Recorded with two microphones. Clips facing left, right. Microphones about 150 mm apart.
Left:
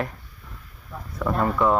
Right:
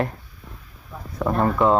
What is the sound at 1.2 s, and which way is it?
Speech, 25° right (ahead or behind).